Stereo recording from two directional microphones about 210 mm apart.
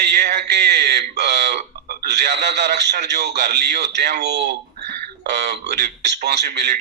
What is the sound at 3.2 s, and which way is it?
Mantra, 50° right (ahead or behind).